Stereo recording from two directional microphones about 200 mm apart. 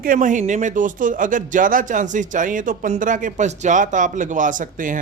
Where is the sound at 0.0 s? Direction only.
40° right (ahead or behind).